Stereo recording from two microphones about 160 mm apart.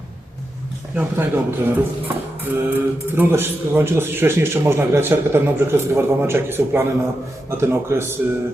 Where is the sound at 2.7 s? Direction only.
15° right (ahead or behind).